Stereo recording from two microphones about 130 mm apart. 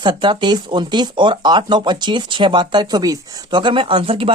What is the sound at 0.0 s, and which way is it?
Speech, 35° right (ahead or behind).